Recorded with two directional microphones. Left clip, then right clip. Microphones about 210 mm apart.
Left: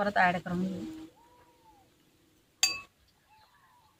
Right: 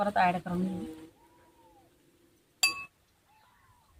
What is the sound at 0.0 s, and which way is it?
Speech, 5° left (ahead or behind).